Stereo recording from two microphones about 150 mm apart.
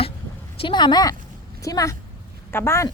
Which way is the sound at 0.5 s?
35° left (ahead or behind).